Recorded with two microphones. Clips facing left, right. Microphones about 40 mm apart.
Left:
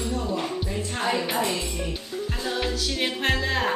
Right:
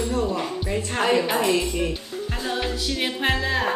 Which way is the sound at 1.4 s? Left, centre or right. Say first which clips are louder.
Right 5 dB; right.